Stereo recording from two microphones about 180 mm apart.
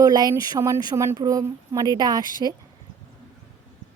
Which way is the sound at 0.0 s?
20° right (ahead or behind).